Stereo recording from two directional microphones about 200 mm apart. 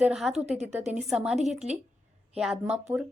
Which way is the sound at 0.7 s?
35° right (ahead or behind).